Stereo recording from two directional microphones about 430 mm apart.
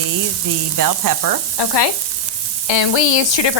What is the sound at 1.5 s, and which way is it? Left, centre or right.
Frying, left.